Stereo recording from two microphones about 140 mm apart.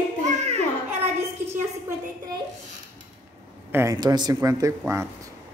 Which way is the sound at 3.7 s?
20° right (ahead or behind).